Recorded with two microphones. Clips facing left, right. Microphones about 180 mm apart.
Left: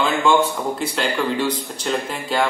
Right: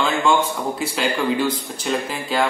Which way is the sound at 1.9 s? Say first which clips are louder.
Even; 5° right (ahead or behind).